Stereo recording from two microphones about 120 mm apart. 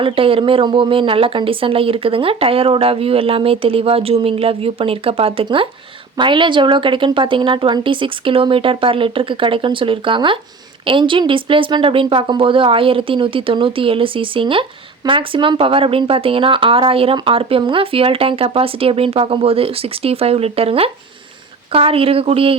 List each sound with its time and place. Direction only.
0.0 s speech: 50° right (ahead or behind)